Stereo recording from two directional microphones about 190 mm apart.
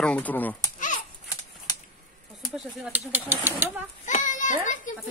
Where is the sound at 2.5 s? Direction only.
5° right (ahead or behind).